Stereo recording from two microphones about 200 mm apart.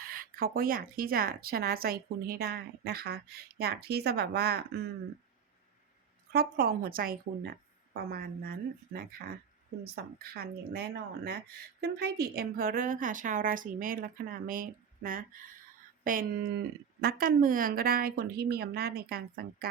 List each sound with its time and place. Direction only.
0.0 s speech: 45° right (ahead or behind)
6.3 s speech: 50° right (ahead or behind)
9.8 s speech: 50° right (ahead or behind)